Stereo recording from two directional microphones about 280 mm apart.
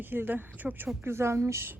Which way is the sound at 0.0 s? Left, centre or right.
Centre.